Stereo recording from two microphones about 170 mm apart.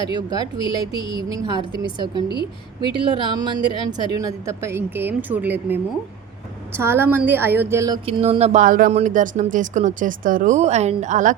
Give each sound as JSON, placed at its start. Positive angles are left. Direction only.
{"t": 0.0, "sound": "speech", "side_deg": -25}
{"t": 8.0, "sound": "speech", "side_deg": -35}
{"t": 8.6, "sound": "speech", "side_deg": -55}
{"t": 8.9, "sound": "speech", "side_deg": -45}